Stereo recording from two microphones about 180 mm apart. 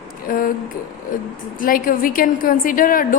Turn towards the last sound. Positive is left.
turn(degrees=50)  # may be behind; listen again after turning